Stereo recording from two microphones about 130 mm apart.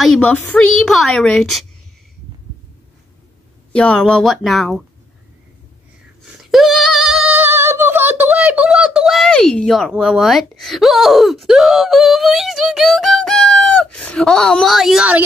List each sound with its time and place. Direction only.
0.0 s a woman's voice: 5° left (ahead or behind)
0.7 s speech: 5° left (ahead or behind)
3.7 s speech: 10° left (ahead or behind)
6.5 s singing: centre (ahead or behind)
7.3 s speech: 15° right (ahead or behind)